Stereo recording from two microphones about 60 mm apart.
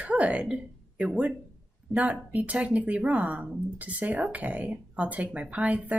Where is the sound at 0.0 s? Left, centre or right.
Right.